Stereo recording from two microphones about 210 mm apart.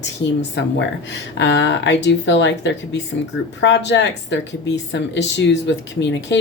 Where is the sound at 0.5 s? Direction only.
55° left (ahead or behind).